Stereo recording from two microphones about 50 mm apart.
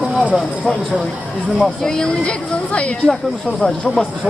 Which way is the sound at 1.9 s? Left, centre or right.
Centre.